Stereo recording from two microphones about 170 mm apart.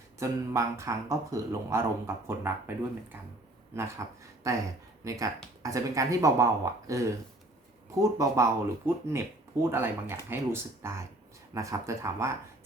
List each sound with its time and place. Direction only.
0.2 s speech: 15° right (ahead or behind)